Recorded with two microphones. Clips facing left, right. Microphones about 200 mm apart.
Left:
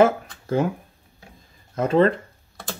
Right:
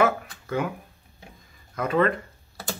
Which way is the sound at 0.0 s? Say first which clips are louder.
Left 5 dB; 30° left (ahead or behind).